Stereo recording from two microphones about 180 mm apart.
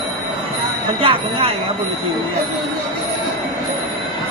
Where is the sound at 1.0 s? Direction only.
30° right (ahead or behind).